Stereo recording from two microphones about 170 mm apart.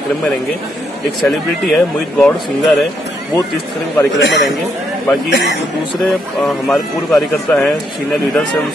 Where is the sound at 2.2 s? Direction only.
5° left (ahead or behind).